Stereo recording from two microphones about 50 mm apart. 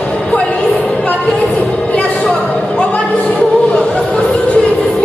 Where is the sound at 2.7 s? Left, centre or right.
Left.